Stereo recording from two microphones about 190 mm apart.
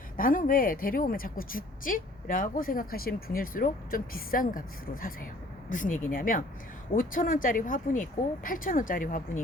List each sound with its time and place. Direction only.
0.2 s a woman's voice: 45° left (ahead or behind)